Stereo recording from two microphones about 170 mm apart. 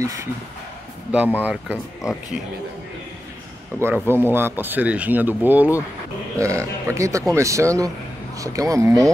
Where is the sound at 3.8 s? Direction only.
15° right (ahead or behind).